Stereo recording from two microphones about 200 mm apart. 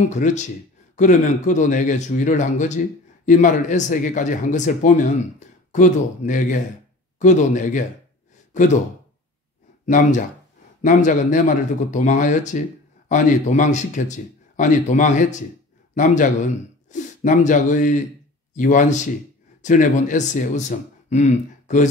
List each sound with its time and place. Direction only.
0.1 s speech: 35° left (ahead or behind)
9.8 s speech: 40° left (ahead or behind)